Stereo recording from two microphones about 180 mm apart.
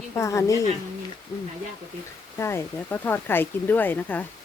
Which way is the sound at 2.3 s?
15° left (ahead or behind).